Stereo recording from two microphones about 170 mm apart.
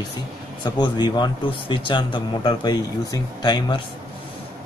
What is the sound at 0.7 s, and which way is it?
Speech, 25° left (ahead or behind).